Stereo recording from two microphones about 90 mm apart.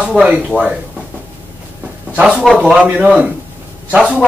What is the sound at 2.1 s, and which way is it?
Speech, 10° right (ahead or behind).